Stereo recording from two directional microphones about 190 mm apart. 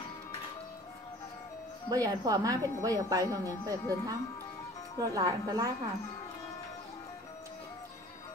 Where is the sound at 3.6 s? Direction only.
15° left (ahead or behind).